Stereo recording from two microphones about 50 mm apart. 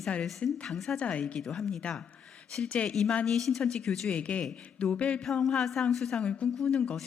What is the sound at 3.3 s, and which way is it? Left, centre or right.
Speech, centre.